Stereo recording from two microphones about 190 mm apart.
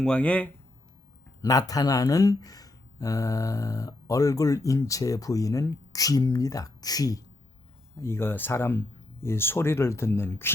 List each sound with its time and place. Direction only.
0.0 s speech: 5° left (ahead or behind)
1.4 s speech: 20° left (ahead or behind)